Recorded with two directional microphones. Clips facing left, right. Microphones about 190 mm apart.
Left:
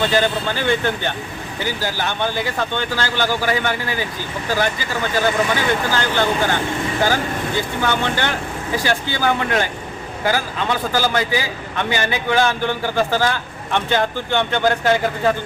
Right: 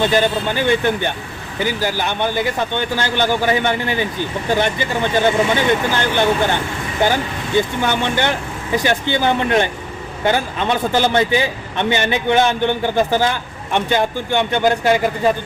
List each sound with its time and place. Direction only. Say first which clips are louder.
0.0 s a man's voice: right 2 dB; 15° right (ahead or behind)